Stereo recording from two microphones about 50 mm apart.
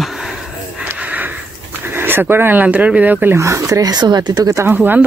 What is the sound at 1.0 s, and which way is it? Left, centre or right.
Sniff, right.